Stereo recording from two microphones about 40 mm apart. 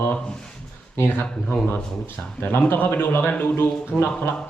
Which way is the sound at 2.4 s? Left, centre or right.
Left.